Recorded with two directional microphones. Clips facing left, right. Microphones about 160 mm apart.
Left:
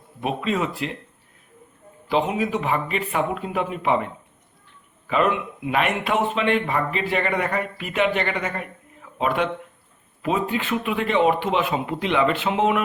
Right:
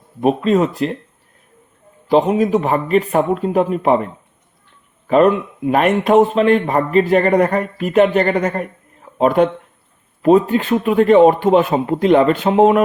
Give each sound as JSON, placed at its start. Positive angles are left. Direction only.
{"t": 0.2, "sound": "speech", "side_deg": -40}
{"t": 2.0, "sound": "a man's voice", "side_deg": -40}